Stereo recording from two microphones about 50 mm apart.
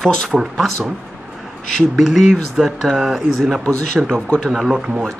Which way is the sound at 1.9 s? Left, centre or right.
Centre.